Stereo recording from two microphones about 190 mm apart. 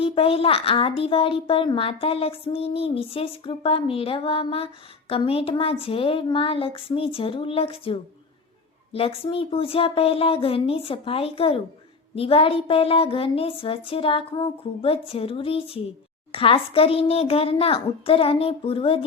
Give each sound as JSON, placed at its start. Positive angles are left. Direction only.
{"t": 0.0, "sound": "a woman's voice", "side_deg": 30}